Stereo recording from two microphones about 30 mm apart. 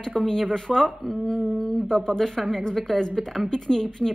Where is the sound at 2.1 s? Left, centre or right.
Centre.